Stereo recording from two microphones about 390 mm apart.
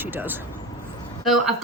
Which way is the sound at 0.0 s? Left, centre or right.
Centre.